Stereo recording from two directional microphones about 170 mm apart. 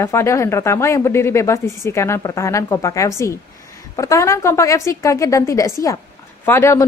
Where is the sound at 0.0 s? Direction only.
15° left (ahead or behind).